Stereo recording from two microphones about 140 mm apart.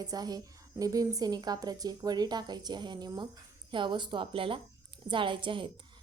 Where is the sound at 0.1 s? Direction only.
25° right (ahead or behind).